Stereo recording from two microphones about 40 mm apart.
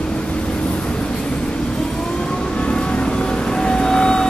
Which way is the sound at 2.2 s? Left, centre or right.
Centre.